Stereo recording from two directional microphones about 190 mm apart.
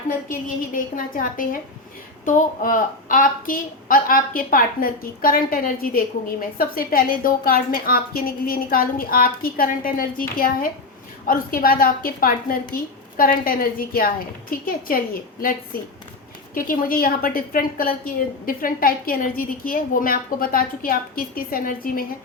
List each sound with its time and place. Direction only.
0.3 s a woman's voice: 45° left (ahead or behind)